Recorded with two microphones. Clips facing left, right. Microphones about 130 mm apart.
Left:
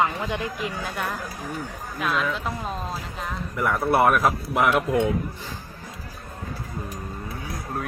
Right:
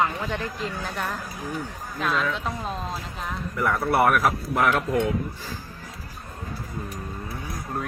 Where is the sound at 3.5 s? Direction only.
20° left (ahead or behind).